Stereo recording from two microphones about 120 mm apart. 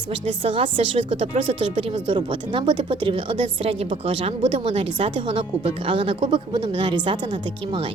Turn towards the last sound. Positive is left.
turn(degrees=-40)  # may be behind; listen again after turning